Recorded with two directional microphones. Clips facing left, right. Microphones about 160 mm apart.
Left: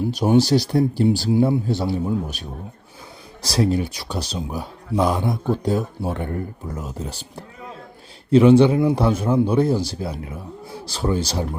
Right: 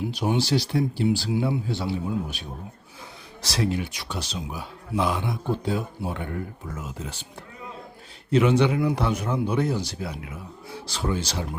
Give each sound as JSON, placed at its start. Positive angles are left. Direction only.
{"t": 0.1, "sound": "speech", "side_deg": 40}
{"t": 3.4, "sound": "speech", "side_deg": 40}